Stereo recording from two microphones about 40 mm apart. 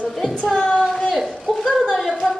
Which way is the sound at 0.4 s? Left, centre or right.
Centre.